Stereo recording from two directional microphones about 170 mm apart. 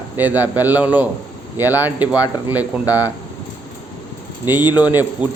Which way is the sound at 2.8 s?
20° left (ahead or behind).